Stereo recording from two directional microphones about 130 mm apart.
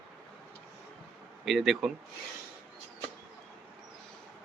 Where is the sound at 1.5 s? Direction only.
Centre (ahead or behind).